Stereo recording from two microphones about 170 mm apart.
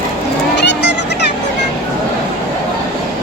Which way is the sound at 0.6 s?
85° left.